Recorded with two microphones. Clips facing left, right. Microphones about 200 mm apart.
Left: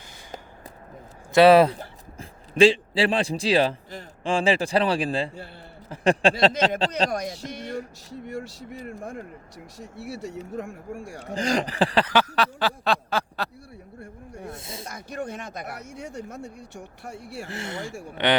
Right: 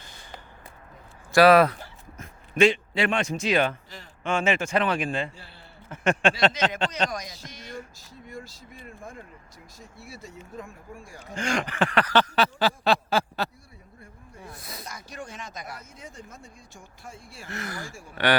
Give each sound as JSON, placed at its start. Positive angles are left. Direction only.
{"t": 1.3, "sound": "a man's voice", "side_deg": 25}
{"t": 7.1, "sound": "speech", "side_deg": 60}
{"t": 8.1, "sound": "a sound", "side_deg": 70}
{"t": 9.7, "sound": "speech", "side_deg": 70}
{"t": 11.3, "sound": "speech", "side_deg": 35}
{"t": 12.1, "sound": "a sound", "side_deg": 5}
{"t": 14.5, "sound": "snake", "side_deg": 25}
{"t": 14.8, "sound": "speech", "side_deg": 55}
{"t": 17.5, "sound": "speech", "side_deg": 25}